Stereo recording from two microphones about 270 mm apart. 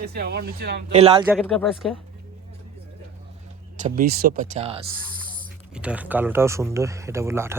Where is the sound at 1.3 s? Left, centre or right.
Centre.